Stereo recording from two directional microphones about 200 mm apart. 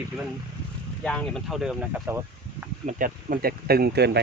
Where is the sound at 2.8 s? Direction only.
40° right (ahead or behind).